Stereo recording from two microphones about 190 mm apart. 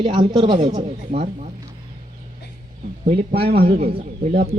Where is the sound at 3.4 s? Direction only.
55° right (ahead or behind).